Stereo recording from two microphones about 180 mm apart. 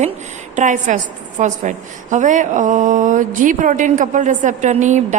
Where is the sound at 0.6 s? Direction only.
45° right (ahead or behind).